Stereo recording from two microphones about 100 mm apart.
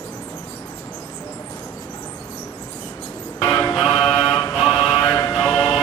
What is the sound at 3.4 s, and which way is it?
Music, 35° left (ahead or behind).